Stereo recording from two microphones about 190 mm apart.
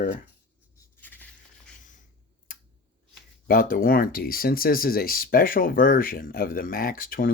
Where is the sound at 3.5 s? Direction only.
50° left (ahead or behind).